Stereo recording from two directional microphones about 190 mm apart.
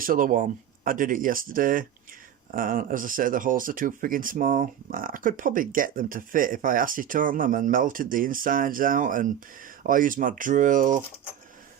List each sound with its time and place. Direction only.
0.0 s speech: 45° right (ahead or behind)